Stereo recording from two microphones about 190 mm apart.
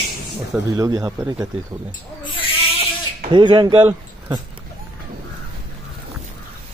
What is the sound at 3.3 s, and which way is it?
Speech, 25° right (ahead or behind).